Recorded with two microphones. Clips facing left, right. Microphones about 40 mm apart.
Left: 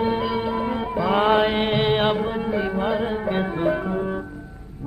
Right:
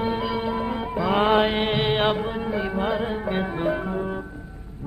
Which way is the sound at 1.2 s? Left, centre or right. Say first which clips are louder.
Left 1 dB; right.